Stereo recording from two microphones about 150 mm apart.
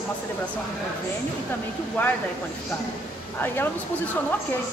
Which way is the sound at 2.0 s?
15° left (ahead or behind).